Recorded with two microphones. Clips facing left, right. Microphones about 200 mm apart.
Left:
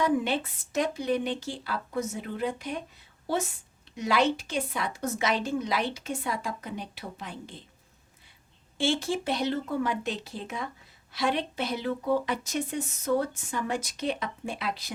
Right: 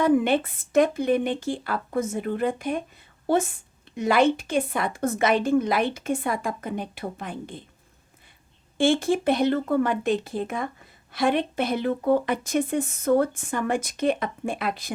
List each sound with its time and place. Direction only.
0.0 s a woman's voice: 55° right (ahead or behind)
8.8 s a woman's voice: 55° right (ahead or behind)